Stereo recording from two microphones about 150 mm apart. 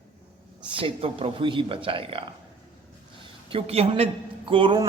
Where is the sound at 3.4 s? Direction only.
40° right (ahead or behind).